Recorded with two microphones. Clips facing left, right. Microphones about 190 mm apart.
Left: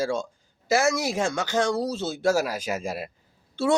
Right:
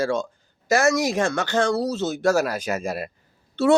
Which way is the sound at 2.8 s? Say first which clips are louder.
Right 3 dB; 60° right (ahead or behind).